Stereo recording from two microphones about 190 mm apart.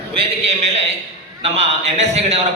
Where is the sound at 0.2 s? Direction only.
30° right (ahead or behind).